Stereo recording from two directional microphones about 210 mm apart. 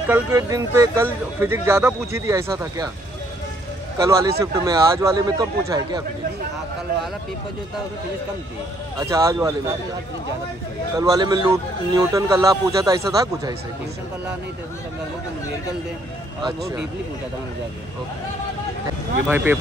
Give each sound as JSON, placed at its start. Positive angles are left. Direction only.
{"t": 0.1, "sound": "speech", "side_deg": -15}
{"t": 4.0, "sound": "speech", "side_deg": -15}
{"t": 9.1, "sound": "speech", "side_deg": -15}
{"t": 11.0, "sound": "speech", "side_deg": -20}
{"t": 19.2, "sound": "speech", "side_deg": -10}